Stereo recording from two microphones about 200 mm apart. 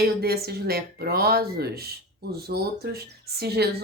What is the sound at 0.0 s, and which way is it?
Speech, 50° right (ahead or behind).